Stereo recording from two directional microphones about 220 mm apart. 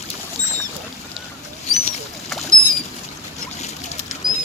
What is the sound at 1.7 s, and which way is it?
Boat, 30° left (ahead or behind).